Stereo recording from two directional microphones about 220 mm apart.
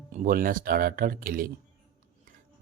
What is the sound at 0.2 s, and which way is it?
Speech, 40° right (ahead or behind).